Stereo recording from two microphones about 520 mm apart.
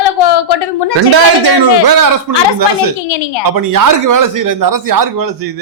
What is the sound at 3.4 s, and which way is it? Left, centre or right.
Speech, right.